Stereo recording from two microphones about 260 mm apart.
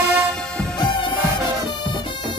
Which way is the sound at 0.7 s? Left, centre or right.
Centre.